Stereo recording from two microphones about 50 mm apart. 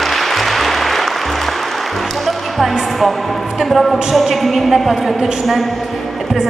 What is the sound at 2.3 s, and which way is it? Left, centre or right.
Music, centre.